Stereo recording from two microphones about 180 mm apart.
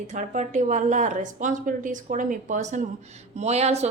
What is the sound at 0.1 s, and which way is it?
Speech, 40° right (ahead or behind).